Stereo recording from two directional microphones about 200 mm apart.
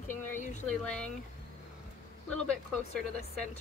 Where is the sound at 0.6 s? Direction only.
5° left (ahead or behind).